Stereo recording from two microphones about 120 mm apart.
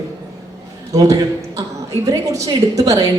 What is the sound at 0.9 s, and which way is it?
A woman's voice, 30° right (ahead or behind).